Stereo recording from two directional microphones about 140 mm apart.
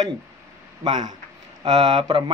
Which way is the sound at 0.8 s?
30° right (ahead or behind).